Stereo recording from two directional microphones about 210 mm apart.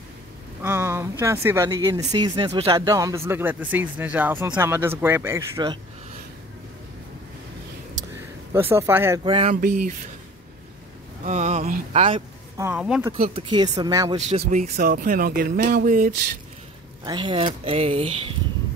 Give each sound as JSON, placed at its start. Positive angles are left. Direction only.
{"t": 0.6, "sound": "a sound", "side_deg": -10}
{"t": 1.2, "sound": "speech", "side_deg": -15}
{"t": 8.5, "sound": "speech", "side_deg": -10}
{"t": 9.2, "sound": "speech", "side_deg": -25}
{"t": 9.6, "sound": "speech", "side_deg": -45}
{"t": 11.2, "sound": "speech", "side_deg": -30}
{"t": 12.5, "sound": "speech", "side_deg": -10}
{"t": 13.3, "sound": "speech", "side_deg": -25}
{"t": 14.1, "sound": "speech", "side_deg": -35}
{"t": 17.0, "sound": "speech", "side_deg": -20}